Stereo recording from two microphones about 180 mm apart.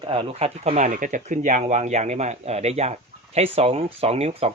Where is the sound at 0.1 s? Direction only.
35° right (ahead or behind).